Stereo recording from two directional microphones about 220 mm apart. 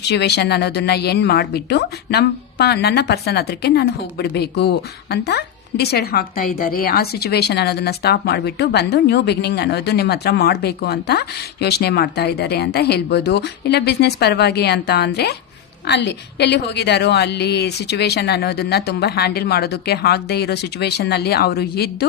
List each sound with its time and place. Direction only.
0.0 s a woman's voice: 50° left (ahead or behind)